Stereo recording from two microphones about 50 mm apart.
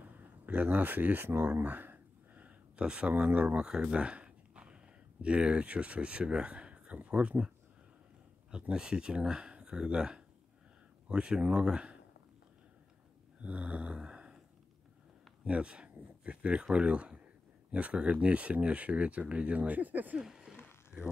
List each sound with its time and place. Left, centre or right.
0.0 s speech: right
1.6 s a sound: right
2.8 s speech: centre
3.1 s speech: right
13.4 s snoring: right
15.4 s speech: right
20.2 s a sound: centre